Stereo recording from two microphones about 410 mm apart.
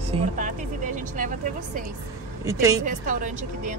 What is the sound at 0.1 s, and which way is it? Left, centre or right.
Speech, centre.